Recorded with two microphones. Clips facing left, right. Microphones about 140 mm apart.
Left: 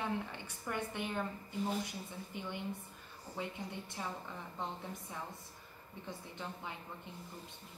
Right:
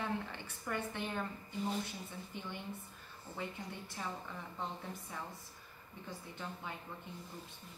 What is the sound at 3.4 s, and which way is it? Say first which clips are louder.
Speech: left 2 dB; 15° left (ahead or behind).